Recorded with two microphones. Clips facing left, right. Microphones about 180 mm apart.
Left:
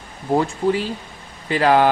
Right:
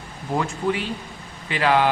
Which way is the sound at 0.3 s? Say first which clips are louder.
Left 5 dB; 35° left (ahead or behind).